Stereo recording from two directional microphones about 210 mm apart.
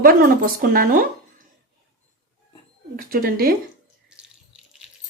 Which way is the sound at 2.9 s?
45° right (ahead or behind).